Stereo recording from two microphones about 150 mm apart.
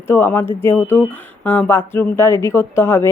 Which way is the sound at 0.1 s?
15° left (ahead or behind).